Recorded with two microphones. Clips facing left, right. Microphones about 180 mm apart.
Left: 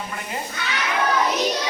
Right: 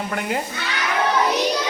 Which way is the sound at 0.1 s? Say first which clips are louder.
Right 8 dB; 75° right (ahead or behind).